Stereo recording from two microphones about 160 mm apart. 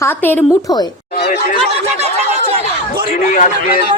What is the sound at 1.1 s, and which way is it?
Speech, 75° left (ahead or behind).